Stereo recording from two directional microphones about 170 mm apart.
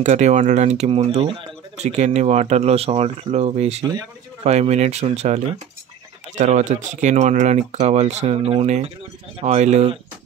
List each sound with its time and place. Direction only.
0.0 s speech: 45° right (ahead or behind)